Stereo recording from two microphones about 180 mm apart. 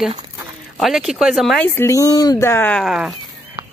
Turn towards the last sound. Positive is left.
turn(degrees=-5)  # may be behind; listen again after turning